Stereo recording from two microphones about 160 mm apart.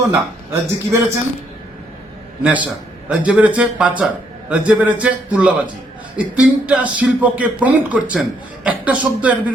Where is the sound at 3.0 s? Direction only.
5° right (ahead or behind).